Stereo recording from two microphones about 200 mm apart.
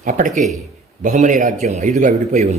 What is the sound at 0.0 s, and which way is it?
A man's voice, 45° right (ahead or behind).